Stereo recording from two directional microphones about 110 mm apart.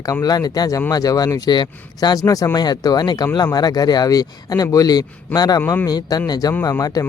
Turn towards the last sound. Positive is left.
turn(degrees=35)  # may be behind; listen again after turning